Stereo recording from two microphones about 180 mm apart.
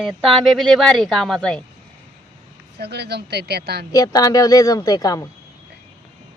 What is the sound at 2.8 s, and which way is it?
Speech, 65° right (ahead or behind).